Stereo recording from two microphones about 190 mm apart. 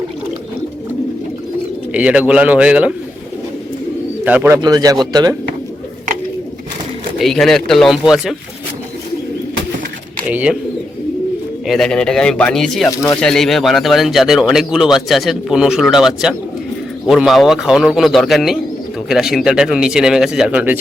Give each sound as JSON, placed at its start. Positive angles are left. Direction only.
{"t": 1.9, "sound": "a man's voice", "side_deg": -5}
{"t": 4.3, "sound": "speech", "side_deg": -10}
{"t": 7.2, "sound": "speech", "side_deg": 0}
{"t": 10.2, "sound": "a man's voice", "side_deg": -5}
{"t": 11.6, "sound": "speech", "side_deg": 0}
{"t": 12.9, "sound": "speech", "side_deg": 15}
{"t": 13.2, "sound": "speech", "side_deg": 0}